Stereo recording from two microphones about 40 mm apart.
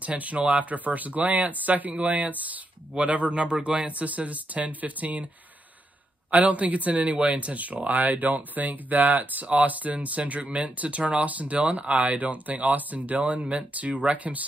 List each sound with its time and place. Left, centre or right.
0.0 s speech: right
3.3 s speech: right
6.3 s speech: right